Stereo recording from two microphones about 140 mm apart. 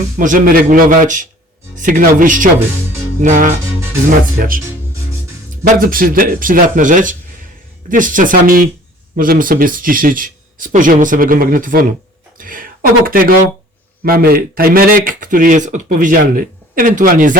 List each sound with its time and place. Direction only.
0.2 s a man's voice: 70° right (ahead or behind)
3.2 s music: 65° right (ahead or behind)
4.4 s speech: 90° right
5.6 s a man's voice: 90° right
12.4 s speech: 75° right (ahead or behind)